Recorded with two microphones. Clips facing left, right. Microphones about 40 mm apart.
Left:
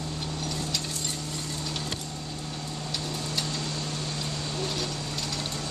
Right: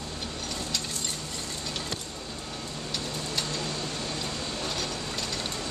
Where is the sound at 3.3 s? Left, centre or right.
Centre.